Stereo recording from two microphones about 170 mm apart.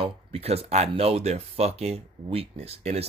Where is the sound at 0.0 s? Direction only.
35° right (ahead or behind).